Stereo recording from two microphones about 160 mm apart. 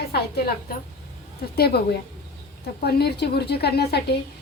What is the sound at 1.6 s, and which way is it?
Speech, 80° left.